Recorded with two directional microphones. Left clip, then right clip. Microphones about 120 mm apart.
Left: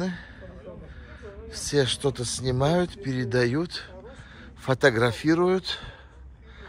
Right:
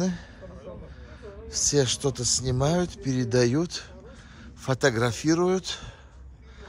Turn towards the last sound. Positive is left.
turn(degrees=-30)  # may be behind; listen again after turning